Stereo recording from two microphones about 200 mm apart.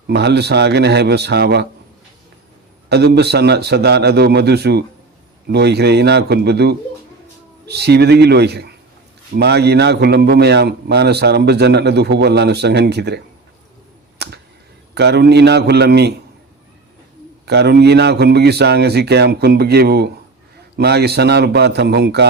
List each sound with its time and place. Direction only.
0.1 s a man's voice: 55° right (ahead or behind)
2.9 s a man's voice: 55° right (ahead or behind)
14.9 s a man's voice: 55° right (ahead or behind)
17.4 s a man's voice: 55° right (ahead or behind)